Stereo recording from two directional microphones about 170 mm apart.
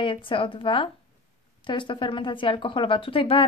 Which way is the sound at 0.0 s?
30° left (ahead or behind).